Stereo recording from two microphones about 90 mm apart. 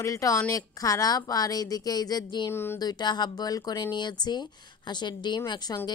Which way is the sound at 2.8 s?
50° left (ahead or behind).